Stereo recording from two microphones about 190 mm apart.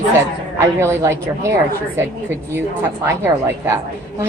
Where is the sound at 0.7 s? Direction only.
15° right (ahead or behind).